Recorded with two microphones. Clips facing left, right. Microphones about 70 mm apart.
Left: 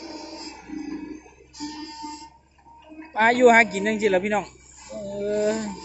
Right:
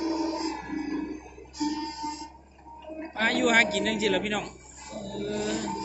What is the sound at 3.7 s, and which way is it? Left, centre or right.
Speech, left.